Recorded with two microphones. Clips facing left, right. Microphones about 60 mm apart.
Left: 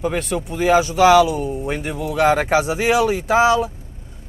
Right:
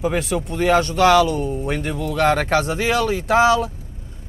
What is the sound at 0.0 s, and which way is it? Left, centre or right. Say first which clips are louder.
Speech: right 1 dB; centre.